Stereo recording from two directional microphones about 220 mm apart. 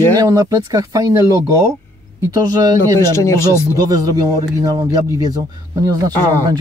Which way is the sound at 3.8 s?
15° right (ahead or behind).